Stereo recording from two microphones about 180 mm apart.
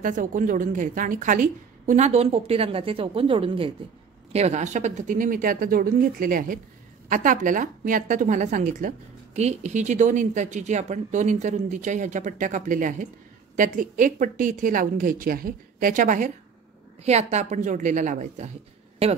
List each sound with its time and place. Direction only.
0.0 s a woman's voice: 50° right (ahead or behind)